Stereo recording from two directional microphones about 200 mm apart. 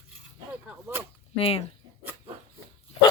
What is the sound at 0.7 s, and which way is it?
Whip, 10° right (ahead or behind).